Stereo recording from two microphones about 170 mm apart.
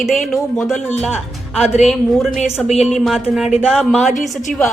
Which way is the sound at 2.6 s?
40° left (ahead or behind).